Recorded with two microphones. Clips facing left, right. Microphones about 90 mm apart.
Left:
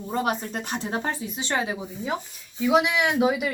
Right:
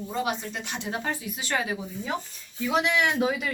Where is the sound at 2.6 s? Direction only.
10° left (ahead or behind).